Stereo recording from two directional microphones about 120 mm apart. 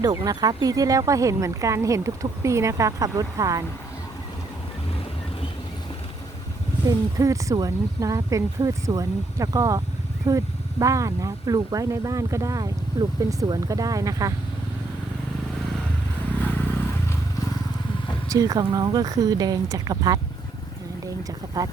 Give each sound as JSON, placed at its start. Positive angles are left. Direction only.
{"t": 0.0, "sound": "speech", "side_deg": -30}
{"t": 6.8, "sound": "speech", "side_deg": -25}
{"t": 16.3, "sound": "vehicle", "side_deg": 15}
{"t": 18.3, "sound": "speech", "side_deg": -30}